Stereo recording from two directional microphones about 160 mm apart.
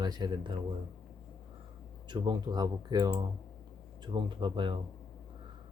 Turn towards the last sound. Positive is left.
turn(degrees=-30)  # may be behind; listen again after turning